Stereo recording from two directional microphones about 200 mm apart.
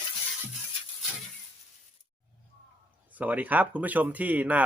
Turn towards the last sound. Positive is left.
turn(degrees=-10)  # may be behind; listen again after turning